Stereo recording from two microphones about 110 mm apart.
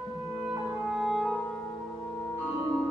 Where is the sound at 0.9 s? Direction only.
5° right (ahead or behind).